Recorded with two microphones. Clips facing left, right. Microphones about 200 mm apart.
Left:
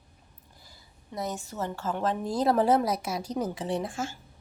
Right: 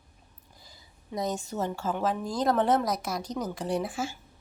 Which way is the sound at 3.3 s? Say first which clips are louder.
Left 4 dB; 30° left (ahead or behind).